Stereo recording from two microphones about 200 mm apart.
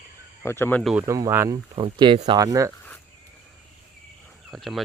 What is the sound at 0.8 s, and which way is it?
Speech, centre (ahead or behind).